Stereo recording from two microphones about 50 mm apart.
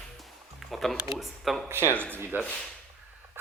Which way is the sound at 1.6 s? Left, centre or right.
Right.